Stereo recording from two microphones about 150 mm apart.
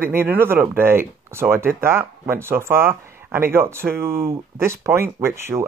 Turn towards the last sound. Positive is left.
turn(degrees=-15)  # may be behind; listen again after turning